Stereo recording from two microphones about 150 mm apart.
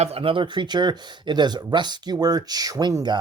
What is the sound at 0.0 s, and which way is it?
Speech, 40° right (ahead or behind).